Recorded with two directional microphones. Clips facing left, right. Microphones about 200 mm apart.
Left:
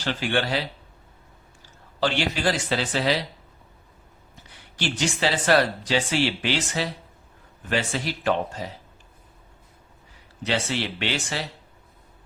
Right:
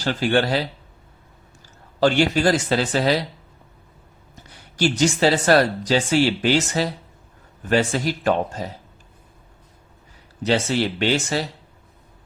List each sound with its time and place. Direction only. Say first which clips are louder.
0.0 s speech: right 5 dB; 40° right (ahead or behind)
2.0 s speech: right 7 dB; 45° right (ahead or behind)
4.8 s speech: right 7 dB; 40° right (ahead or behind)
10.4 s speech: right 6 dB; 40° right (ahead or behind)